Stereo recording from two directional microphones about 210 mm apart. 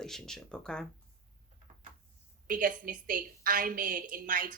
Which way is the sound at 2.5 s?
40° right (ahead or behind).